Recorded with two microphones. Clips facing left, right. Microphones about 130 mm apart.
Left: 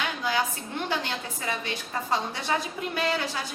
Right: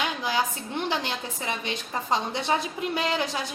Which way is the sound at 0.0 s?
20° right (ahead or behind).